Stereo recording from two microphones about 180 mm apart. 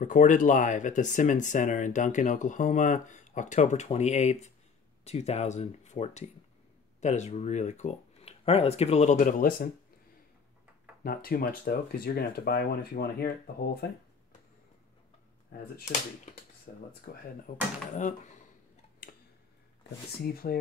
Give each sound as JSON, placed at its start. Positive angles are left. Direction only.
{"t": 0.0, "sound": "speech", "side_deg": 45}
{"t": 11.1, "sound": "speech", "side_deg": 55}
{"t": 15.5, "sound": "speech", "side_deg": 60}
{"t": 16.7, "sound": "speech", "side_deg": 50}
{"t": 17.9, "sound": "speech", "side_deg": 40}
{"t": 20.2, "sound": "speech", "side_deg": 60}